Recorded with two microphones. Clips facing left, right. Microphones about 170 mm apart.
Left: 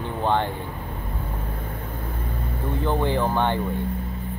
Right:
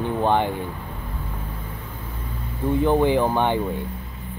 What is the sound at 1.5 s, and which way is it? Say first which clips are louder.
Vehicle: left 3 dB; 55° left (ahead or behind).